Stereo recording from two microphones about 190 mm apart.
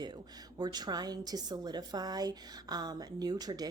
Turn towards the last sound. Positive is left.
turn(degrees=-20)  # may be behind; listen again after turning